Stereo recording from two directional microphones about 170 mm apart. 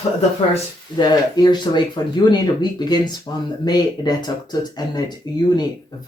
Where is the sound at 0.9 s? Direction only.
25° left (ahead or behind).